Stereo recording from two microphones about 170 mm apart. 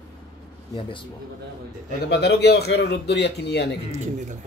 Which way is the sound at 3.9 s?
45° right (ahead or behind).